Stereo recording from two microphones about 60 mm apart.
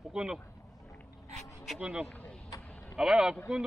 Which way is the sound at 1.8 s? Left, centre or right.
Centre.